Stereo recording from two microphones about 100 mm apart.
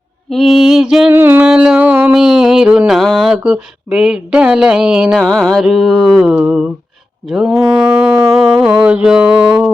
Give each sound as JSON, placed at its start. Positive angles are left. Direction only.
{"t": 0.3, "sound": "mantra", "side_deg": 0}
{"t": 1.1, "sound": "a sound", "side_deg": -20}
{"t": 1.5, "sound": "a sound", "side_deg": -10}
{"t": 2.1, "sound": "speech", "side_deg": -5}
{"t": 5.2, "sound": "music", "side_deg": 10}
{"t": 5.5, "sound": "mantra", "side_deg": -5}